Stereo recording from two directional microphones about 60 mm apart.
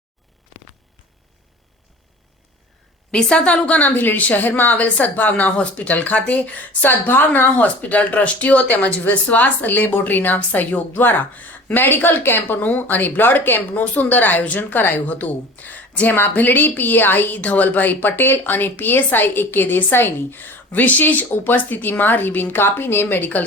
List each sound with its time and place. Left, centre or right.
3.1 s a woman's voice: centre; by 23.4 s left